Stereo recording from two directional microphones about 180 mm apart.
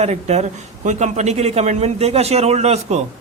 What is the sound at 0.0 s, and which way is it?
A man's voice, 40° right (ahead or behind).